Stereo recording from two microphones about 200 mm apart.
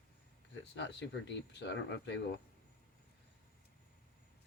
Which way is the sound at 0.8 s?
60° left (ahead or behind).